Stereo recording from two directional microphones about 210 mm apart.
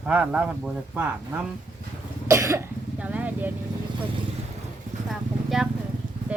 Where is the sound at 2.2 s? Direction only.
15° right (ahead or behind).